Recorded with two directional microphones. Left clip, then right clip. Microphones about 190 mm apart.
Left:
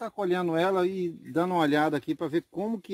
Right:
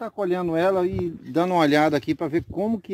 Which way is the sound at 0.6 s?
15° right (ahead or behind).